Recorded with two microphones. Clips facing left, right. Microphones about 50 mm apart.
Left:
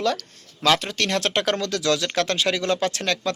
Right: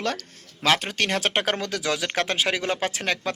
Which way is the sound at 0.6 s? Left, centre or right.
Centre.